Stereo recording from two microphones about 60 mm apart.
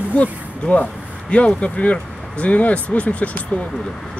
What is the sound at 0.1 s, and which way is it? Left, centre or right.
Speech, left.